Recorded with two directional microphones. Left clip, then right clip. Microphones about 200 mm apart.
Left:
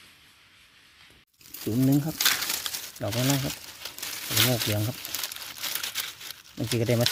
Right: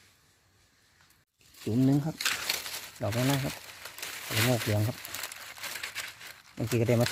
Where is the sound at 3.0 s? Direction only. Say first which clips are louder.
Left 2 dB; 5° left (ahead or behind).